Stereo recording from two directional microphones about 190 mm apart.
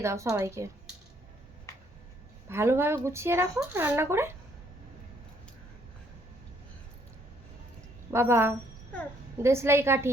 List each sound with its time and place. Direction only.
0.0 s speech: 15° right (ahead or behind)
2.5 s speech: 15° right (ahead or behind)
8.1 s speech: 15° right (ahead or behind)